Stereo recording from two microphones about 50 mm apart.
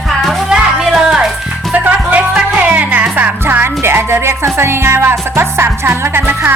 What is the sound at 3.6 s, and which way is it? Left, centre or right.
Music, right.